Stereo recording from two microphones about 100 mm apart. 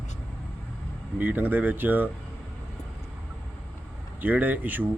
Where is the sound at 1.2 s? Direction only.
15° right (ahead or behind).